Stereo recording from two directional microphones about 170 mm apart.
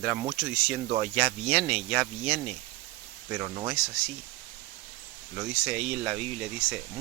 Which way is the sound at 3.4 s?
30° right (ahead or behind).